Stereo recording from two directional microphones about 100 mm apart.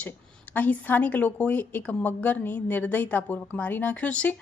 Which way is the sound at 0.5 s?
15° left (ahead or behind).